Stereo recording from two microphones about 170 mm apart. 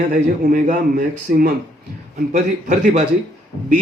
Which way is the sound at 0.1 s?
55° right (ahead or behind).